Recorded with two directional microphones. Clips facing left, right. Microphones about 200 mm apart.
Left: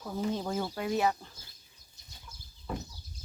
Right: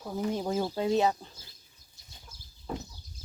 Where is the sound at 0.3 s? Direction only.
15° right (ahead or behind).